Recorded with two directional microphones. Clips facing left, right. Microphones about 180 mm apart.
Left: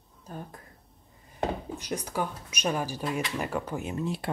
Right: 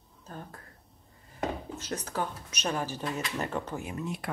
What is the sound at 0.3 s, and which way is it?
Speech, 10° left (ahead or behind).